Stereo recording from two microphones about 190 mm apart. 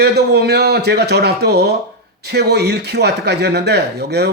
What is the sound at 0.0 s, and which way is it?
A man's voice, 60° right (ahead or behind).